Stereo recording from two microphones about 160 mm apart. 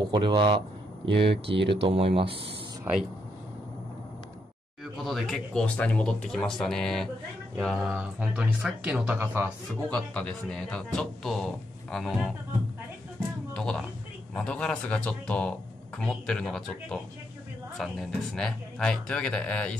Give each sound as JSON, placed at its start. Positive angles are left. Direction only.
{"t": 0.1, "sound": "a man's voice", "side_deg": -30}
{"t": 1.0, "sound": "speech", "side_deg": -90}
{"t": 1.8, "sound": "speech", "side_deg": -35}
{"t": 5.0, "sound": "speech", "side_deg": 0}
{"t": 9.8, "sound": "speech", "side_deg": 5}
{"t": 13.5, "sound": "a man's voice", "side_deg": 5}